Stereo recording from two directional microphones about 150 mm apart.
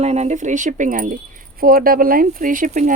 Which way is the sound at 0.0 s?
45° right (ahead or behind).